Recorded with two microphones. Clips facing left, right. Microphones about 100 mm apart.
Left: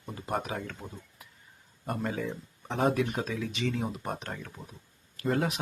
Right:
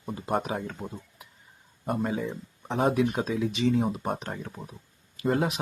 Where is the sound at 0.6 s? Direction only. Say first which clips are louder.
Right 5 dB; 15° right (ahead or behind).